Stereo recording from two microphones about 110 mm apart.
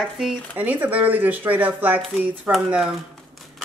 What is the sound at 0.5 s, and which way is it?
Speech, 15° right (ahead or behind).